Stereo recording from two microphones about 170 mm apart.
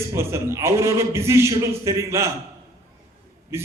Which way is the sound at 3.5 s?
15° right (ahead or behind).